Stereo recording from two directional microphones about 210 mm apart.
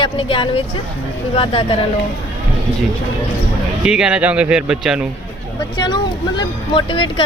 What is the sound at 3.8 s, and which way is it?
Speech, 5° right (ahead or behind).